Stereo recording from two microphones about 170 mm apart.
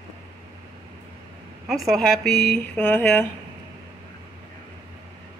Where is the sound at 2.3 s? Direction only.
70° left (ahead or behind).